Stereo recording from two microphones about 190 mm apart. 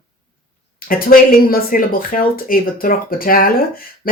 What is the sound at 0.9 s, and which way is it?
Speech, 50° left (ahead or behind).